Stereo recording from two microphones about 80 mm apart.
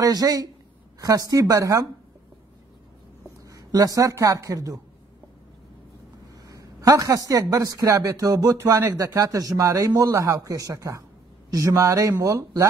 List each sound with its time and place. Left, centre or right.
0.0 s a man's voice: right
3.4 s a sound: right
4.1 s a man's voice: right
6.4 s a sound: right
7.4 s a man's voice: right
8.5 s a man's voice: right